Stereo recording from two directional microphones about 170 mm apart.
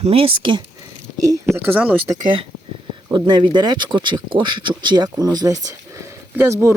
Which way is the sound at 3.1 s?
25° right (ahead or behind).